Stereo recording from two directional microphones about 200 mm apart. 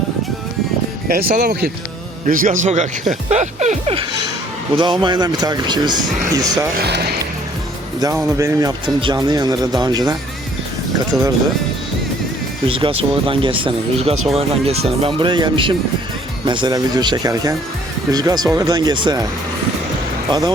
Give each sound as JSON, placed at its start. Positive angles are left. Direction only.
{"t": 1.0, "sound": "speech", "side_deg": -50}
{"t": 6.7, "sound": "speech", "side_deg": -55}
{"t": 8.0, "sound": "speech", "side_deg": -15}
{"t": 12.6, "sound": "speech", "side_deg": -25}